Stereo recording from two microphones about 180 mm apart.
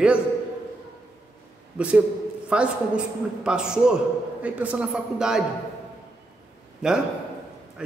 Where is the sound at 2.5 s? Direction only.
5° right (ahead or behind).